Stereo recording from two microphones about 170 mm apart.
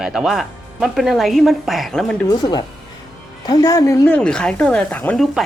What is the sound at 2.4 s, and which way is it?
Speech, 25° left (ahead or behind).